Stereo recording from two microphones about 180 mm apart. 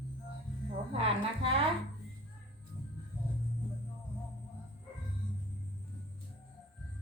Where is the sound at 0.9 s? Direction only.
30° right (ahead or behind).